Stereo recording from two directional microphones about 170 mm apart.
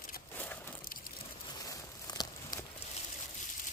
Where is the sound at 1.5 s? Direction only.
20° left (ahead or behind).